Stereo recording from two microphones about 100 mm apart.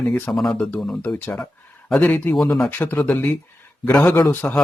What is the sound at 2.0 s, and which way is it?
A man's voice, 15° left (ahead or behind).